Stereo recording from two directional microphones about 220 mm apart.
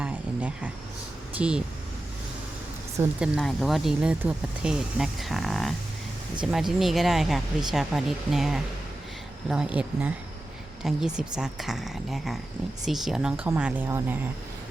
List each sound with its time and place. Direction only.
0.0 s a sound: 5° right (ahead or behind)
1.4 s speech: 5° right (ahead or behind)
3.2 s speech: centre (ahead or behind)